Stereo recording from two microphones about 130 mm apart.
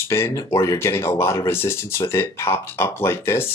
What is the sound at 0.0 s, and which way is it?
Speech, 20° left (ahead or behind).